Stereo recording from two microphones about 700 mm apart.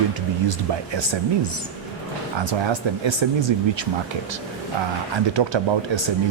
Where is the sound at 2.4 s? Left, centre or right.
Right.